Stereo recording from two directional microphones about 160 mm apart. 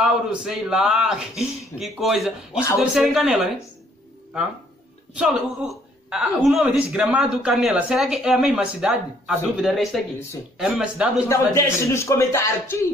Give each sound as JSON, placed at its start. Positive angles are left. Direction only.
{"t": 0.0, "sound": "a man's voice", "side_deg": -5}
{"t": 5.1, "sound": "a man's voice", "side_deg": -5}
{"t": 11.2, "sound": "speech", "side_deg": 15}